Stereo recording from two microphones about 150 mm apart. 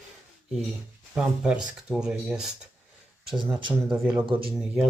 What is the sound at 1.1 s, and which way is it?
Speech, 5° right (ahead or behind).